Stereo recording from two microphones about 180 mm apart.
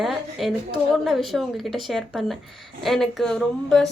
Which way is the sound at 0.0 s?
Centre (ahead or behind).